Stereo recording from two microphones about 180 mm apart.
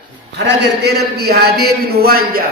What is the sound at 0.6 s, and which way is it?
A man's voice, 65° right (ahead or behind).